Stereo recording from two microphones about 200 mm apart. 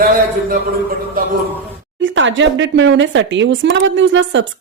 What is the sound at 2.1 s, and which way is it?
A woman's voice, 70° right (ahead or behind).